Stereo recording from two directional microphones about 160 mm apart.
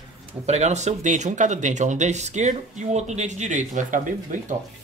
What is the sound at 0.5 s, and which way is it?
Speech, 45° right (ahead or behind).